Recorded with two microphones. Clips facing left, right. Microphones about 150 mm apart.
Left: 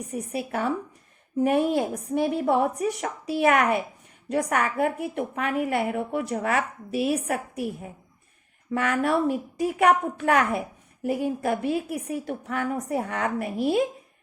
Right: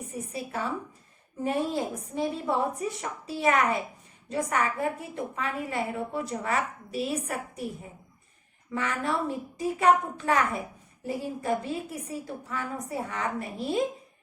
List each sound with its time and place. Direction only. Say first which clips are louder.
0.1 s speech: left 6 dB; 65° left (ahead or behind)
8.7 s a woman's voice: left 6 dB; 65° left (ahead or behind)